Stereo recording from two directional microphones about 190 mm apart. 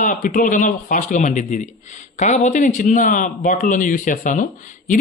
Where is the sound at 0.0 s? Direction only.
40° left (ahead or behind).